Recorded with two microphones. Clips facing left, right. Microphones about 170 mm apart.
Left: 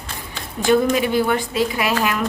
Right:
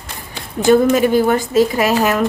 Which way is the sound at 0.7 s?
45° right (ahead or behind).